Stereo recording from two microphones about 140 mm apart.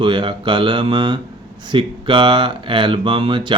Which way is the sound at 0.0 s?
35° right (ahead or behind).